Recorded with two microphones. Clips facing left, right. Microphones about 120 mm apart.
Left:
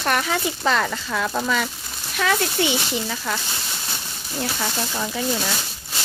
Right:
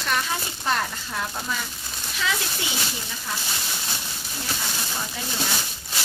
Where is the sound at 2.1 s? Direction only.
55° left (ahead or behind).